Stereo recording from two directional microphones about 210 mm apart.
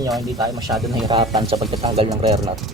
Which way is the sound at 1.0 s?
20° right (ahead or behind).